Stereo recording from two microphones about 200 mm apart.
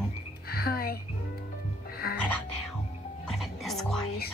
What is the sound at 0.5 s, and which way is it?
Music, 50° left (ahead or behind).